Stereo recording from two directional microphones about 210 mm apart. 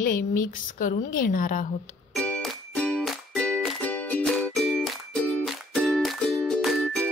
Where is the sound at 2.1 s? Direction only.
5° left (ahead or behind).